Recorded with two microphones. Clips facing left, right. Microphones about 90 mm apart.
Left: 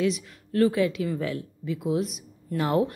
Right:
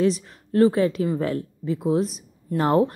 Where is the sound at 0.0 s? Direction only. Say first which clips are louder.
Right 4 dB; 30° right (ahead or behind).